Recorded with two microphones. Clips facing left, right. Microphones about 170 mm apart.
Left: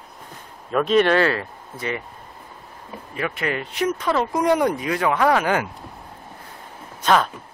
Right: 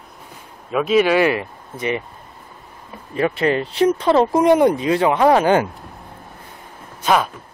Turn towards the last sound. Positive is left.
turn(degrees=-10)  # may be behind; listen again after turning